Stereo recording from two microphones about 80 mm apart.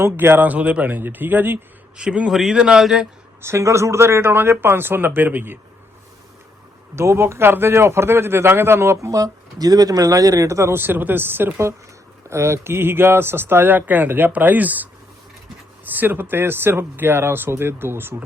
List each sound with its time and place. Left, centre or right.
0.0 s speech: right
2.0 s a man's voice: centre
3.4 s speech: right
6.9 s speech: right
9.0 s speech: right